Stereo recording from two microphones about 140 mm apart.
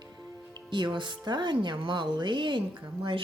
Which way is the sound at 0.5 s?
35° right (ahead or behind).